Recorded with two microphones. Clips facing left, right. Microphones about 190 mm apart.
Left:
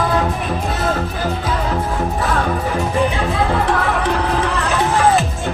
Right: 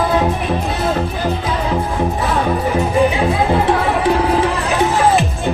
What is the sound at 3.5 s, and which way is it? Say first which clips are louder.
Music: right 3 dB; 25° right (ahead or behind).